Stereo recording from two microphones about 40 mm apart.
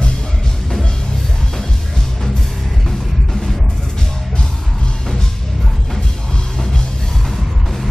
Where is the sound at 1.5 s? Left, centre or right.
Centre.